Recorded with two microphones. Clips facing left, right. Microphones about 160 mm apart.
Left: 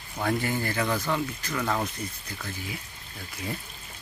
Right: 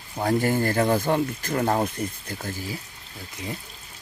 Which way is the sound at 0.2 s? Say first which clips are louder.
Right 5 dB; 40° right (ahead or behind).